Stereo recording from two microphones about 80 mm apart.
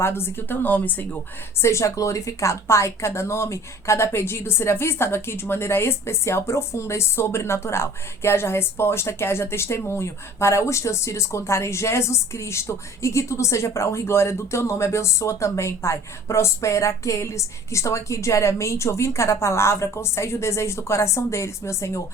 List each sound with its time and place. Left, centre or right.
0.0 s a woman's voice: left
1.5 s speech: left